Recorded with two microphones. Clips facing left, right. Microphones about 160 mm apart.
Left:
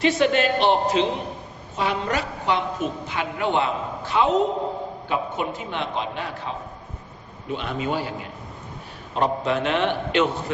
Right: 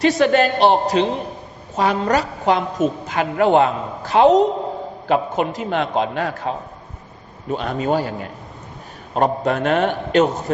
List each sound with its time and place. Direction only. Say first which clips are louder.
0.0 s a man's voice: right 4 dB; 45° right (ahead or behind)
5.0 s a man's voice: right 8 dB; 80° right
5.7 s a man's voice: right 10 dB; 45° right (ahead or behind)
7.5 s a woman's voice: right 6 dB; 40° right (ahead or behind)